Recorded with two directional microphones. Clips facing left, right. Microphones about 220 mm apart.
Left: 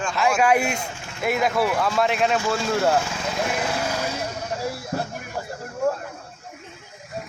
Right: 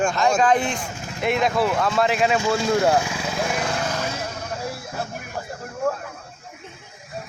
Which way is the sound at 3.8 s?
10° left (ahead or behind).